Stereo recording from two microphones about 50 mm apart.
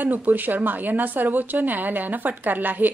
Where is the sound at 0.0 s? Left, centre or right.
Right.